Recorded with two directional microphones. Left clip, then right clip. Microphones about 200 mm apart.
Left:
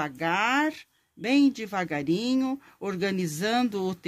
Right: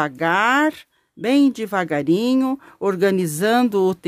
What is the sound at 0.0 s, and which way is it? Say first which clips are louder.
Speech: right 8 dB; 50° right (ahead or behind).